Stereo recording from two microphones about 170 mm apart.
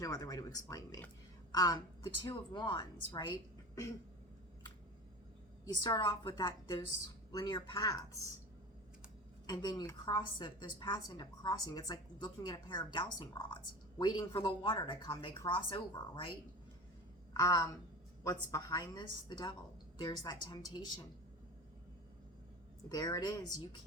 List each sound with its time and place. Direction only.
0.0 s a woman's voice: 20° left (ahead or behind)
5.8 s a woman's voice: 25° left (ahead or behind)
9.5 s a woman's voice: 25° left (ahead or behind)
17.3 s a woman's voice: 20° left (ahead or behind)
22.9 s a woman's voice: 25° left (ahead or behind)